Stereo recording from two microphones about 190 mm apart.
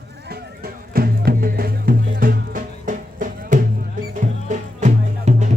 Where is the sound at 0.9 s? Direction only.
50° right (ahead or behind).